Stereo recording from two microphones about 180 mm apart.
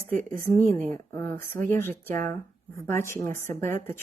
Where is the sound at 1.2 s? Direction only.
10° left (ahead or behind).